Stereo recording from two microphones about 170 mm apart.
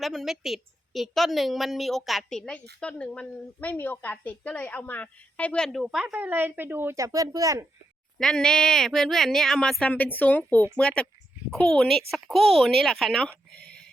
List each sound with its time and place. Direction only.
0.0 s a woman's voice: centre (ahead or behind); by 7.7 s 20° right (ahead or behind)
8.2 s a woman's voice: 5° left (ahead or behind)